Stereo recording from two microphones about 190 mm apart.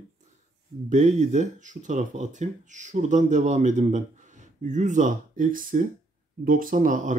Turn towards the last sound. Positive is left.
turn(degrees=-45)  # may be behind; listen again after turning